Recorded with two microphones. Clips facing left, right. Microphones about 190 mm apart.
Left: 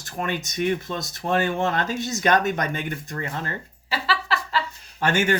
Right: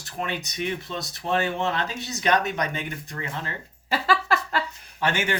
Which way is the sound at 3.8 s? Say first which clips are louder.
Right 3 dB; 45° right (ahead or behind).